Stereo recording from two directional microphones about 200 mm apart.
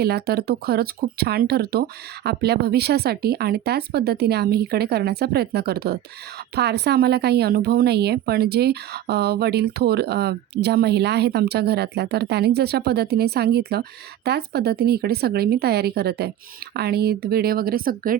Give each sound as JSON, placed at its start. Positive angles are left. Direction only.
{"t": 0.0, "sound": "speech", "side_deg": -55}